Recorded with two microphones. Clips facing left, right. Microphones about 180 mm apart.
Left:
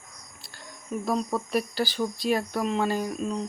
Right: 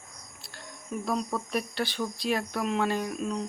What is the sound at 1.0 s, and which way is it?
Speech, centre (ahead or behind).